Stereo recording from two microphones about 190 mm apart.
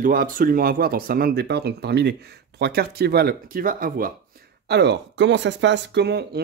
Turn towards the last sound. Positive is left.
turn(degrees=-60)  # may be behind; listen again after turning